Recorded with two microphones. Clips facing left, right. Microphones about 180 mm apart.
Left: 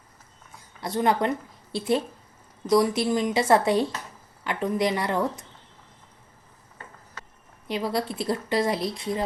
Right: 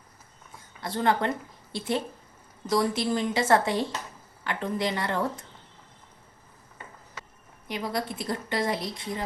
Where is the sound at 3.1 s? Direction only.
20° left (ahead or behind).